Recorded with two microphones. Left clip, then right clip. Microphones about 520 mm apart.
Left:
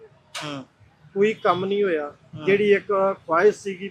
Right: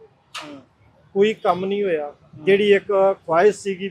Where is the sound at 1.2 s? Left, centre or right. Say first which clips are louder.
Right 2 dB; right.